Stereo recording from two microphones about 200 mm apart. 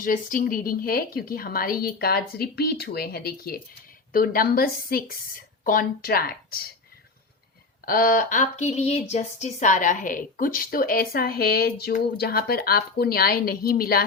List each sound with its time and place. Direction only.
0.0 s speech: 45° left (ahead or behind)
7.9 s speech: 45° left (ahead or behind)